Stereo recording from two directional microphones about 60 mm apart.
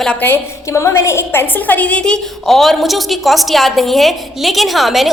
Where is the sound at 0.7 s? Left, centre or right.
Left; by 2.2 s centre.